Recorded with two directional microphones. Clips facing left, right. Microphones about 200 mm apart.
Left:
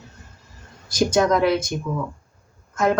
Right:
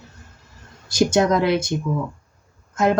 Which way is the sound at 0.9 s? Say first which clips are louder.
Right 1 dB; 25° right (ahead or behind).